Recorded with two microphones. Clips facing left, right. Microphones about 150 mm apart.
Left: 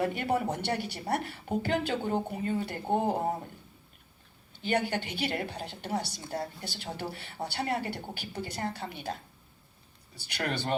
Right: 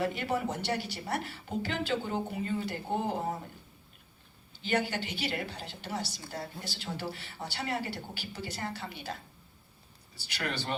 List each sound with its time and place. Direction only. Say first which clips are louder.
0.0 s a woman's voice: left 2 dB; 55° left (ahead or behind)
4.6 s a woman's voice: left 2 dB; 60° left (ahead or behind)
10.2 s a woman's voice: left 3 dB; 60° left (ahead or behind)